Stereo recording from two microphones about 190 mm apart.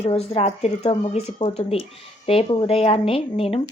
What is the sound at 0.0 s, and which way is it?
Speech, 35° left (ahead or behind).